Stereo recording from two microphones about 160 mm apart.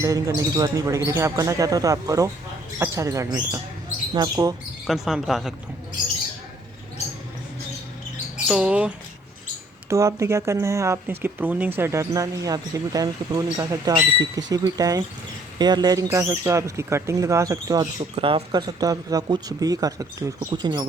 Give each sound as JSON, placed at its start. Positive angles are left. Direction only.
{"t": 0.0, "sound": "speech", "side_deg": -20}
{"t": 4.9, "sound": "speech", "side_deg": 0}
{"t": 8.4, "sound": "speech", "side_deg": -5}
{"t": 9.9, "sound": "speech", "side_deg": -20}
{"t": 18.2, "sound": "speech", "side_deg": -35}